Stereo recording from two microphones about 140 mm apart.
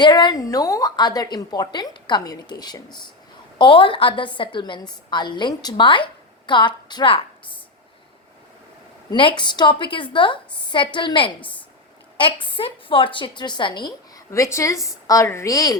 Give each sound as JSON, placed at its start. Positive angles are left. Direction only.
{"t": 0.0, "sound": "a woman's voice", "side_deg": 30}
{"t": 9.0, "sound": "a woman's voice", "side_deg": 35}
{"t": 14.3, "sound": "a woman's voice", "side_deg": 20}